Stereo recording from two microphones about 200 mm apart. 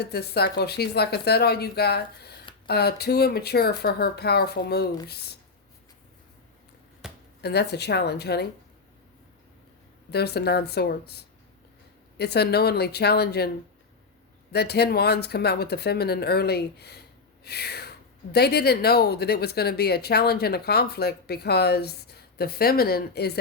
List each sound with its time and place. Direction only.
0.0 s speech: 55° left (ahead or behind)
7.0 s a sound: 5° right (ahead or behind)
7.4 s speech: 55° left (ahead or behind)
10.1 s speech: 55° left (ahead or behind)
14.5 s speech: 55° left (ahead or behind)